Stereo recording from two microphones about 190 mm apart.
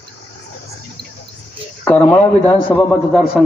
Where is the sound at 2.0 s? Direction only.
15° left (ahead or behind).